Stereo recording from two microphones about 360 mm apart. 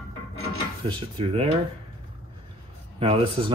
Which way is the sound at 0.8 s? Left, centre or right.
Centre.